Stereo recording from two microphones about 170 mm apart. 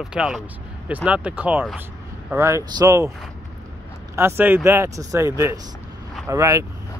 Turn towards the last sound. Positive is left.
turn(degrees=-20)  # may be behind; listen again after turning